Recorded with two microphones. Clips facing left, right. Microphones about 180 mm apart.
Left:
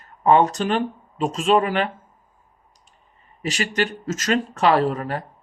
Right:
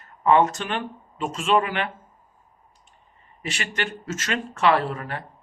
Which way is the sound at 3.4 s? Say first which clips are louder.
Left 6 dB; 35° left (ahead or behind).